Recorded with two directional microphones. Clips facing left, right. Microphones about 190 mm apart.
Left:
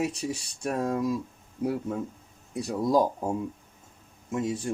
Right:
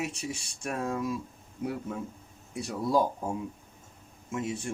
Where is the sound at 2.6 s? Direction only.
40° left (ahead or behind).